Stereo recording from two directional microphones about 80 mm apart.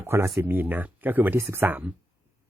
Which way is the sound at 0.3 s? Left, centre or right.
Right.